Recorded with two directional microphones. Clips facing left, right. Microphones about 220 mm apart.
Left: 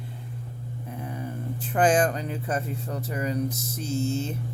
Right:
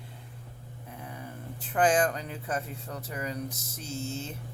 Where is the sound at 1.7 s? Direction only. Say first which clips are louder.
Left 3 dB; 35° left (ahead or behind).